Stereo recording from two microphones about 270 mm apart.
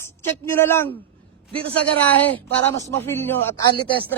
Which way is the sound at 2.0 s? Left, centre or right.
Centre.